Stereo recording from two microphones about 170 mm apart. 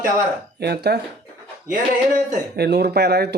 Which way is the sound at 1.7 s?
55° right (ahead or behind).